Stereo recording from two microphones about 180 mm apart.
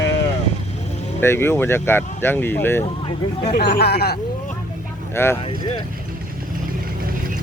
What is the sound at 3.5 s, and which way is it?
Speech, 65° left (ahead or behind).